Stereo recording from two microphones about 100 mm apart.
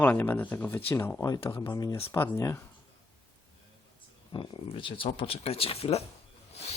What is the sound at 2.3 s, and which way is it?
Speech, 30° left (ahead or behind).